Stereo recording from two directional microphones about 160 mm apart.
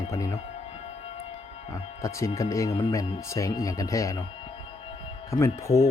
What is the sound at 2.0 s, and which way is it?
Speech, 20° left (ahead or behind).